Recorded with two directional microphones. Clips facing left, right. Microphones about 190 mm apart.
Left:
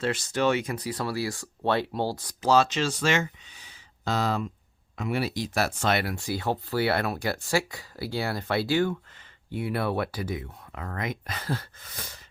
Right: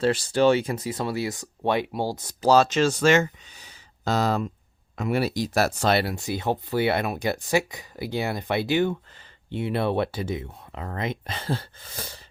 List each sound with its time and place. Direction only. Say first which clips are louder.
0.0 s speech: right 5 dB; 35° right (ahead or behind); by 2.3 s 15° right (ahead or behind)
2.4 s speech: right 4 dB; 40° right (ahead or behind)